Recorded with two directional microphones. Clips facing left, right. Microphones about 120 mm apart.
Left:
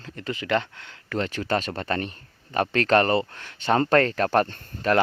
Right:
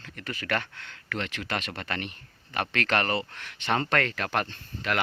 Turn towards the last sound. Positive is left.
turn(degrees=35)  # may be behind; listen again after turning